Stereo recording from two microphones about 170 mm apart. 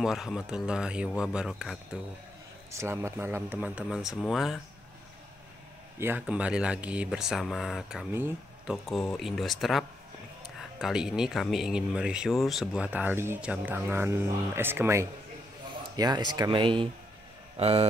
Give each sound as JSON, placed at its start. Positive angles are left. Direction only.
{"t": 0.0, "sound": "speech", "side_deg": 0}
{"t": 2.7, "sound": "speech", "side_deg": -15}
{"t": 5.9, "sound": "speech", "side_deg": -10}
{"t": 8.8, "sound": "speech", "side_deg": 0}
{"t": 16.0, "sound": "speech", "side_deg": -25}